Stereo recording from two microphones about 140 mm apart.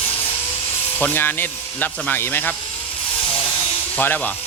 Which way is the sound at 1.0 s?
15° left (ahead or behind).